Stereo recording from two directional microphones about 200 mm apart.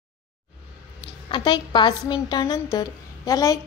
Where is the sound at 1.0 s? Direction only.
25° left (ahead or behind).